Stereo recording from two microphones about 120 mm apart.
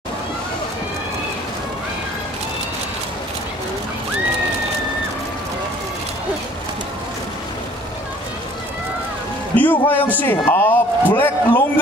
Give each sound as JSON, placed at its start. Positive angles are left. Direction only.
{"t": 9.6, "sound": "a man's voice", "side_deg": 15}